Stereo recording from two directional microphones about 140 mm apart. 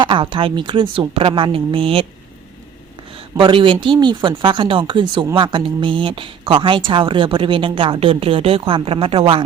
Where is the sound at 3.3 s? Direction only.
40° right (ahead or behind).